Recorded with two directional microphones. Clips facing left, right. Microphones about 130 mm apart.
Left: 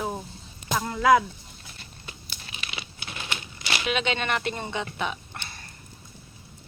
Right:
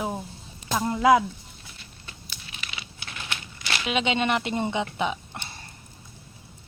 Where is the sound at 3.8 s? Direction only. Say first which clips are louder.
Right 3 dB; 20° right (ahead or behind).